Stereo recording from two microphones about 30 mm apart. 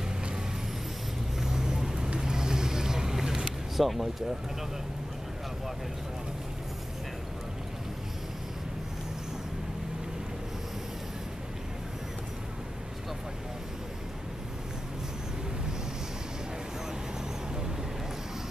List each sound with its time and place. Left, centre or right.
1.4 s vehicle: centre
3.8 s speech: centre